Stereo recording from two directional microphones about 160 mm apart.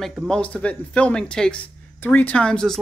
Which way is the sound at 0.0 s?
Centre (ahead or behind).